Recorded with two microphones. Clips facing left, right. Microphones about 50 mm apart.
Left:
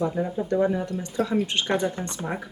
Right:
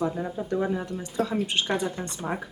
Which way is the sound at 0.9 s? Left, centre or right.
Centre.